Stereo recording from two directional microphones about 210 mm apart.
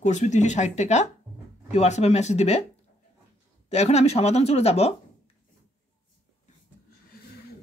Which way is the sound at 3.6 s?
30° left (ahead or behind).